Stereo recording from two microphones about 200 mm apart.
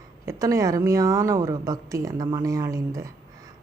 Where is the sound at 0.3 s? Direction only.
15° right (ahead or behind).